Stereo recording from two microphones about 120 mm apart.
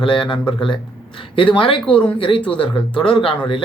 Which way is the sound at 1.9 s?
10° left (ahead or behind).